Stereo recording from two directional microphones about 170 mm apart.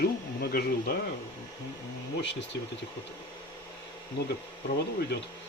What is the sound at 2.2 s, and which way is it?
Speech, 90° left.